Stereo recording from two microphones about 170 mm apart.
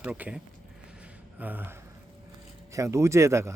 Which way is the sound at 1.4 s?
10° right (ahead or behind).